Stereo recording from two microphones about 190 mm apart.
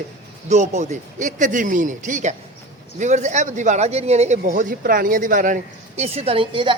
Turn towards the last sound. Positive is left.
turn(degrees=-25)  # may be behind; listen again after turning